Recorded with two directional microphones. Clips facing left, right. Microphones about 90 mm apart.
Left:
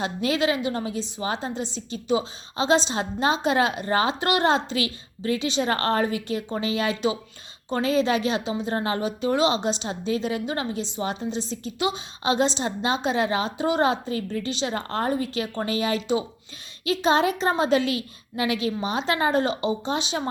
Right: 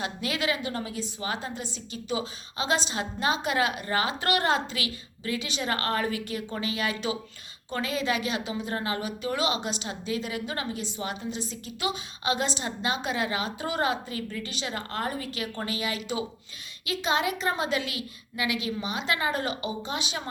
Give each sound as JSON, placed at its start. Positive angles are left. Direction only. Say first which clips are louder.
{"t": 0.0, "sound": "a woman's voice", "louder": "left 6 dB", "side_deg": 30}